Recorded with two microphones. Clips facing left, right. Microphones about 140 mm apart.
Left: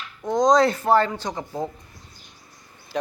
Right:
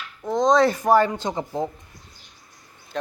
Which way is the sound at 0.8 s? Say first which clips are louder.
Right 1 dB; 15° right (ahead or behind).